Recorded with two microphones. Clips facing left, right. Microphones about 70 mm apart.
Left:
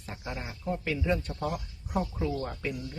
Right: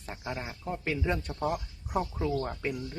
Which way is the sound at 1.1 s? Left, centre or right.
Right.